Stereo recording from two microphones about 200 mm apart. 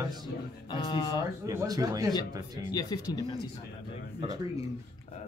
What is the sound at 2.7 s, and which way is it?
Speech, 20° left (ahead or behind).